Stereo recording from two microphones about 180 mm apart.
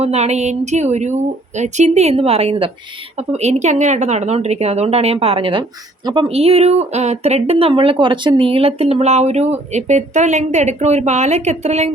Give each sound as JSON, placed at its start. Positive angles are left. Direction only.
{"t": 0.0, "sound": "speech", "side_deg": -35}